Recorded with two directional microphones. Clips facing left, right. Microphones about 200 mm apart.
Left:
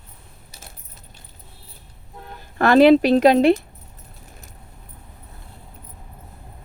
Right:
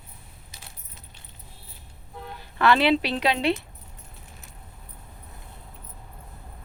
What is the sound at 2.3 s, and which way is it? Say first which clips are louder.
Speech: left 7 dB; 45° left (ahead or behind).